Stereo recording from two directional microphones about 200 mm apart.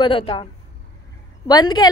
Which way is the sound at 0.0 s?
25° left (ahead or behind).